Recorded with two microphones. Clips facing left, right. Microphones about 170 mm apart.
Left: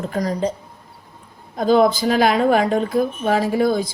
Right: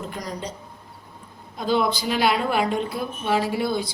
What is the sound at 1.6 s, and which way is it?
Speech, 45° left (ahead or behind).